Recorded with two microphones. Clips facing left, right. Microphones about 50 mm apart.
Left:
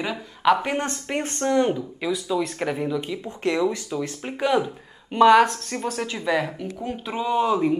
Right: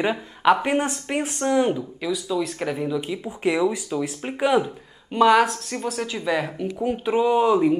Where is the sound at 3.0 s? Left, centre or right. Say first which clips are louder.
Right 2 dB; centre.